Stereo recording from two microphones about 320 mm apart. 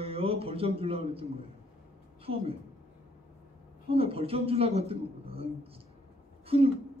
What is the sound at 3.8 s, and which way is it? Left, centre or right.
Speech, centre.